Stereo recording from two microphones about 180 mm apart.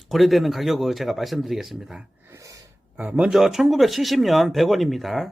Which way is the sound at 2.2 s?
15° right (ahead or behind).